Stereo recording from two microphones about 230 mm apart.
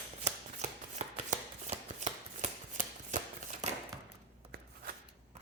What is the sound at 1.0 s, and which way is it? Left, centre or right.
Shuffling cards, right.